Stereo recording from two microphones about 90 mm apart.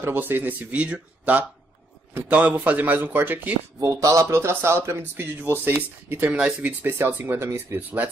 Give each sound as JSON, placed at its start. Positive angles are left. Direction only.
{"t": 0.0, "sound": "speech", "side_deg": -25}
{"t": 3.8, "sound": "speech", "side_deg": -40}
{"t": 6.9, "sound": "speech", "side_deg": -25}